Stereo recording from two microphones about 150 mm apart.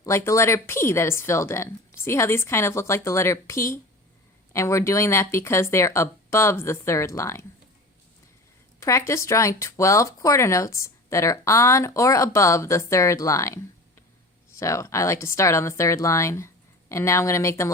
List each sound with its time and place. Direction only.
0.0 s speech: 20° left (ahead or behind)
8.8 s speech: 20° left (ahead or behind)